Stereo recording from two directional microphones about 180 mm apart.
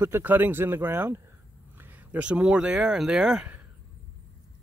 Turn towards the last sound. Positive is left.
turn(degrees=-5)  # may be behind; listen again after turning